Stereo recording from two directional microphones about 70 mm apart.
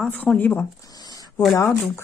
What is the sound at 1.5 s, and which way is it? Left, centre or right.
Speech, left.